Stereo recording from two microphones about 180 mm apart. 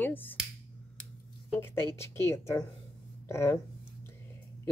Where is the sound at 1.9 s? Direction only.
15° left (ahead or behind).